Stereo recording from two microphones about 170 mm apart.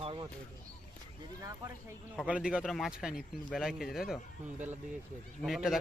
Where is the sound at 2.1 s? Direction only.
5° right (ahead or behind).